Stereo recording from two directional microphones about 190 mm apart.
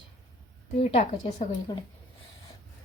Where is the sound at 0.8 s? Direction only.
35° left (ahead or behind).